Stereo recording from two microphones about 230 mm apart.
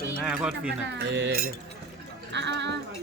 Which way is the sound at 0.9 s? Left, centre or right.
Right.